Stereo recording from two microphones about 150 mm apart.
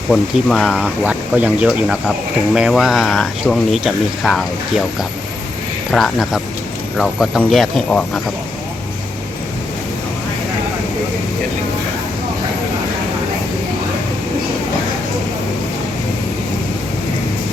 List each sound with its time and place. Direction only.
0.1 s speech: 5° left (ahead or behind)
5.9 s speech: centre (ahead or behind)